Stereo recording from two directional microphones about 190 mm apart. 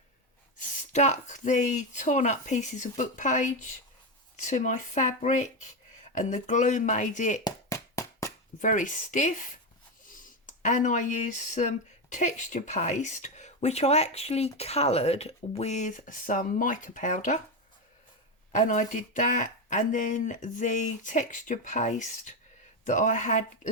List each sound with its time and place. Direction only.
0.9 s speech: 35° left (ahead or behind)
7.4 s a sound: 15° left (ahead or behind)
8.5 s speech: 40° left (ahead or behind)
18.5 s speech: 40° left (ahead or behind)